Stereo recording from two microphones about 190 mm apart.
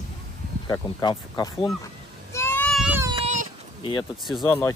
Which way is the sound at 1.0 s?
20° left (ahead or behind).